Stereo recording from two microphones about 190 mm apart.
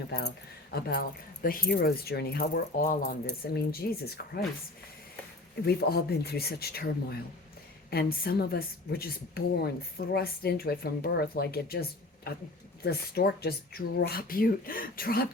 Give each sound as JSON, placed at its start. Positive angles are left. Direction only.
{"t": 0.7, "sound": "speech", "side_deg": 55}
{"t": 5.6, "sound": "speech", "side_deg": 55}